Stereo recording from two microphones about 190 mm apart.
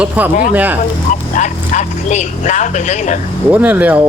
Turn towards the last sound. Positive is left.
turn(degrees=-5)  # may be behind; listen again after turning